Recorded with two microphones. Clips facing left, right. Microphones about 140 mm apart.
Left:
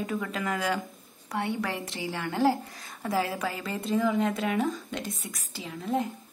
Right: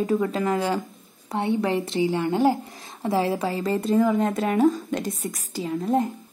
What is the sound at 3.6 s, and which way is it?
Speech, 45° right (ahead or behind).